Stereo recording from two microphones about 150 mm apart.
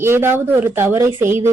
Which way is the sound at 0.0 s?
15° right (ahead or behind).